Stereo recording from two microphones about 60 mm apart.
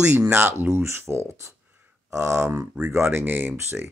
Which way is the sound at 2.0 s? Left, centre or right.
Right.